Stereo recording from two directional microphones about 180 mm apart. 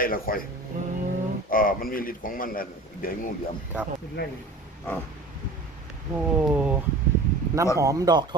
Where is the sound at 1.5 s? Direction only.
50° left (ahead or behind).